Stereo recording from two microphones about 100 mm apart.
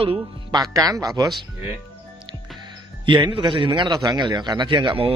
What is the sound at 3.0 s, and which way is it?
A man's voice, 55° right (ahead or behind).